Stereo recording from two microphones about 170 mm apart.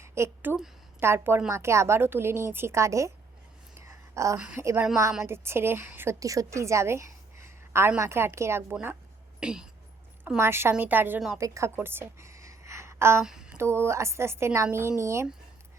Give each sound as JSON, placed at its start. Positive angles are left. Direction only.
{"t": 0.0, "sound": "a sound", "side_deg": -15}
{"t": 0.9, "sound": "a woman's voice", "side_deg": -15}
{"t": 3.8, "sound": "a sound", "side_deg": -15}
{"t": 4.4, "sound": "a woman's voice", "side_deg": -5}
{"t": 13.2, "sound": "mantra", "side_deg": -5}
{"t": 13.6, "sound": "a woman's voice", "side_deg": -15}